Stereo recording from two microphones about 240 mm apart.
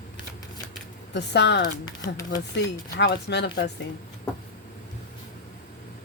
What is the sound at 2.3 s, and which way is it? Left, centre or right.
Speech, left.